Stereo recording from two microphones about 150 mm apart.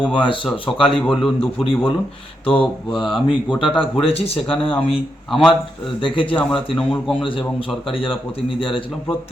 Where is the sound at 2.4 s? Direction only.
35° left (ahead or behind).